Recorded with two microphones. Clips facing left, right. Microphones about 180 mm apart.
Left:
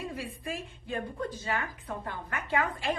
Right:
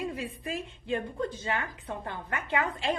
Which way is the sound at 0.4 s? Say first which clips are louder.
Right 2 dB; 25° right (ahead or behind).